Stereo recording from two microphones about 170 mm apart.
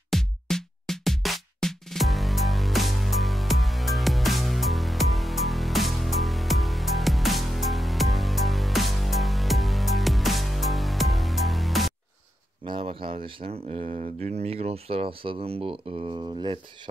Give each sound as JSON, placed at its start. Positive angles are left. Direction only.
{"t": 0.1, "sound": "music", "side_deg": 5}
{"t": 12.6, "sound": "speech", "side_deg": -30}